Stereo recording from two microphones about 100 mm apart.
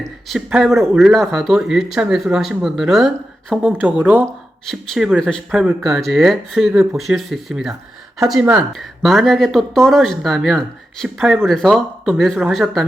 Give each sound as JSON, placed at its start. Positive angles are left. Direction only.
{"t": 0.0, "sound": "speech", "side_deg": 0}
{"t": 3.7, "sound": "speech", "side_deg": -20}
{"t": 4.6, "sound": "speech", "side_deg": 0}
{"t": 5.5, "sound": "speech", "side_deg": -5}